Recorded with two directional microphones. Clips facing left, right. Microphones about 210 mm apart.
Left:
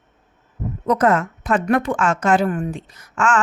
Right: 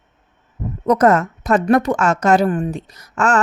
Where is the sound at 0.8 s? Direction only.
40° right (ahead or behind).